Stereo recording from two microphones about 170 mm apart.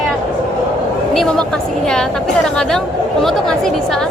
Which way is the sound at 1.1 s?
5° left (ahead or behind).